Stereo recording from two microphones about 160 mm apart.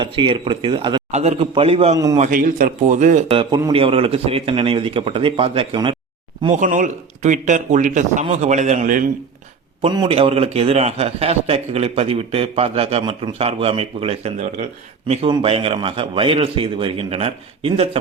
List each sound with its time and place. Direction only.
0.0 s a man's voice: 30° right (ahead or behind)
1.1 s a man's voice: 45° right (ahead or behind)
2.1 s speech: 55° right (ahead or behind)
3.2 s a man's voice: 35° right (ahead or behind)
6.5 s speech: 50° right (ahead or behind)
9.9 s a man's voice: 30° right (ahead or behind)
10.2 s a man's voice: 40° right (ahead or behind)